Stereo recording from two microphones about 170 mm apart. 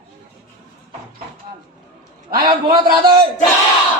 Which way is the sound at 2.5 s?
30° right (ahead or behind).